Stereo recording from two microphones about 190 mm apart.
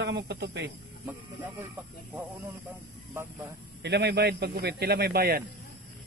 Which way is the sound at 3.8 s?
65° right (ahead or behind).